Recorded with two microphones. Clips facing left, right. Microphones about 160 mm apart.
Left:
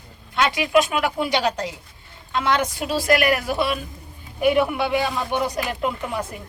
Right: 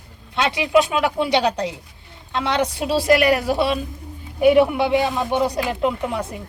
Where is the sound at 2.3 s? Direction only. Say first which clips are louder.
Right 1 dB; 30° right (ahead or behind).